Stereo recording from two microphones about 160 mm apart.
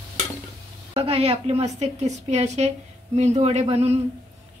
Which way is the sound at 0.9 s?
35° right (ahead or behind).